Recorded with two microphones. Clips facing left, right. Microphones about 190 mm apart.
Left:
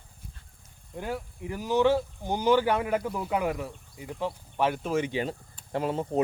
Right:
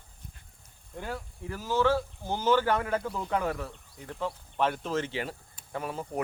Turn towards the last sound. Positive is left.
turn(degrees=25)  # may be behind; listen again after turning